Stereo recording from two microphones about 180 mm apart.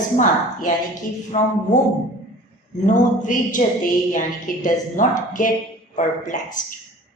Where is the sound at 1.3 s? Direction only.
45° left (ahead or behind).